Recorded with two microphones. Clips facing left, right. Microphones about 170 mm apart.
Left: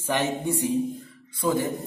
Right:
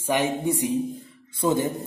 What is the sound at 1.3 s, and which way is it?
Speech, 25° right (ahead or behind).